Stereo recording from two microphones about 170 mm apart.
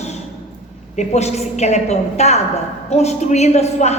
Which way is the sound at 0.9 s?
40° left (ahead or behind).